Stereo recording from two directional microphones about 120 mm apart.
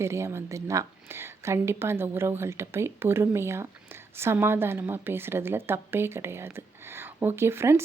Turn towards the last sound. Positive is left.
turn(degrees=-20)  # may be behind; listen again after turning